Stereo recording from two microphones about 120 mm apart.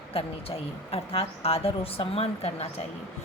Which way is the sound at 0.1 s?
55° left (ahead or behind).